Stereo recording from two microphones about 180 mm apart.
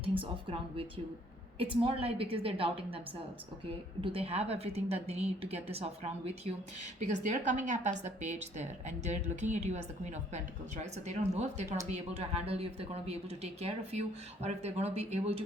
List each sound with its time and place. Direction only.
0.0 s a woman's voice: 30° right (ahead or behind)
4.0 s a woman's voice: 30° right (ahead or behind)